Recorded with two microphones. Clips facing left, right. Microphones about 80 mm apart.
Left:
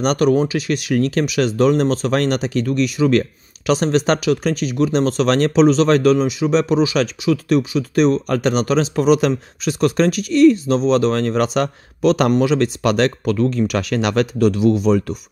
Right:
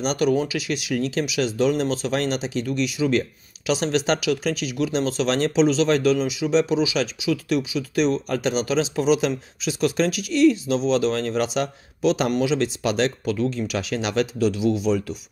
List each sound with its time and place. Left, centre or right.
0.0 s speech: left